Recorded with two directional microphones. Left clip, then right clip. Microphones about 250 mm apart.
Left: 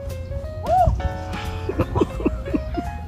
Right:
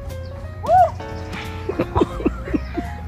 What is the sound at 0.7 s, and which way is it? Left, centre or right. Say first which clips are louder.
Music: right 4 dB; centre.